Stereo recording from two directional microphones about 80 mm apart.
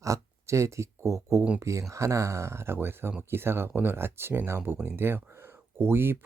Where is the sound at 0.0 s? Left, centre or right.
Right.